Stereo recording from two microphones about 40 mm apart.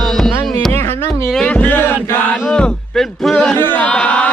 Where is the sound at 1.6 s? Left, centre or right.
Left.